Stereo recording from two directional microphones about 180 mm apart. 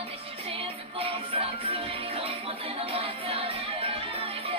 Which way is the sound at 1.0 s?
30° right (ahead or behind).